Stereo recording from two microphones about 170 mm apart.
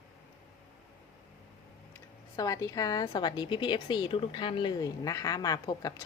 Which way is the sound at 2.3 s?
20° left (ahead or behind).